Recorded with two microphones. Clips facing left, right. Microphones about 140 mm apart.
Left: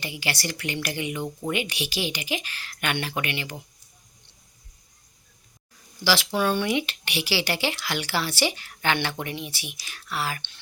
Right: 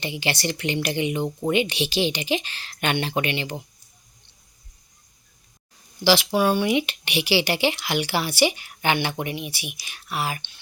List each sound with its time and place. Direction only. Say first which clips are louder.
0.0 s speech: right 4 dB; 25° right (ahead or behind)
6.1 s speech: right 4 dB; 15° right (ahead or behind)